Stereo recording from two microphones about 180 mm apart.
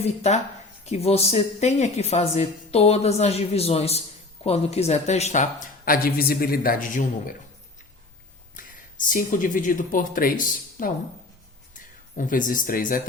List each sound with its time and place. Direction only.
0.0 s a woman's voice: 35° left (ahead or behind)
8.5 s speech: 50° left (ahead or behind)